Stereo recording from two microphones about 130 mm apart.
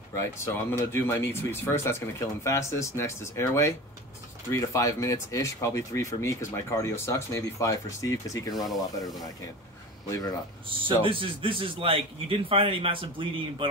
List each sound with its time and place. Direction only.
0.1 s speech: 20° left (ahead or behind)
8.5 s speech: centre (ahead or behind)
10.0 s speech: 25° left (ahead or behind)
10.7 s a man's voice: 40° right (ahead or behind)